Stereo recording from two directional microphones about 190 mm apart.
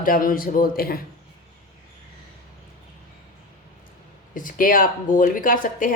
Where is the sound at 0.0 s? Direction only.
45° left (ahead or behind).